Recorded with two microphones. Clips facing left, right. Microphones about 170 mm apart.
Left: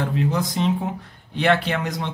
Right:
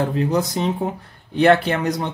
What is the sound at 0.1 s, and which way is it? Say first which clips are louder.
Speech: right 3 dB; 45° right (ahead or behind).